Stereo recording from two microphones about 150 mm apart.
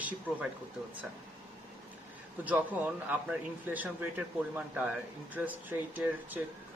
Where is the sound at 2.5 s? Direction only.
10° right (ahead or behind).